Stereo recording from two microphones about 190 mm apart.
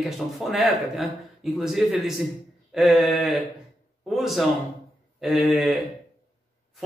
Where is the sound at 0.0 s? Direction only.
Centre (ahead or behind).